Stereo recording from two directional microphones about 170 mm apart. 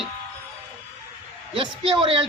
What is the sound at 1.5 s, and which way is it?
Speech, 30° right (ahead or behind).